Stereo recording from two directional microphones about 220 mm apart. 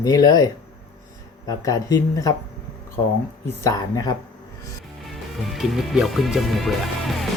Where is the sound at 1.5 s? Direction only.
15° left (ahead or behind).